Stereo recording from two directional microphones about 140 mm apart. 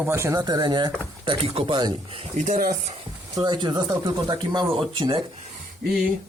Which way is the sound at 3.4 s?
30° right (ahead or behind).